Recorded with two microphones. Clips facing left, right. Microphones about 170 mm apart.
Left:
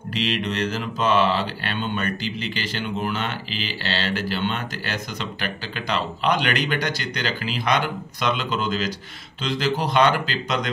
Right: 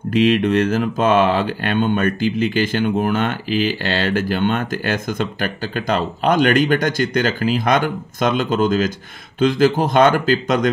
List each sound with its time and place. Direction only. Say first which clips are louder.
0.1 s mantra: right 11 dB; 50° right (ahead or behind)